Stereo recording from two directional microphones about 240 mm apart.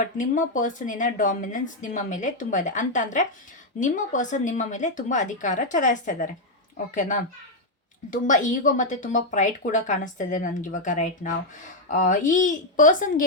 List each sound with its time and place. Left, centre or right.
0.0 s a woman's voice: left